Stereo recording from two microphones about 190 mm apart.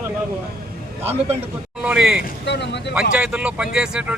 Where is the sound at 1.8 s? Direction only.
5° right (ahead or behind).